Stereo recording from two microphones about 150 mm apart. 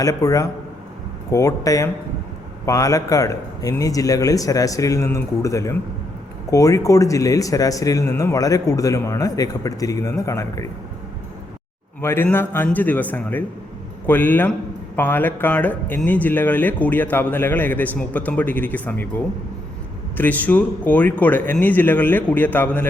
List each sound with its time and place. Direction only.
0.0 s speech: 25° left (ahead or behind)
11.9 s speech: 15° left (ahead or behind)
20.1 s speech: 10° left (ahead or behind)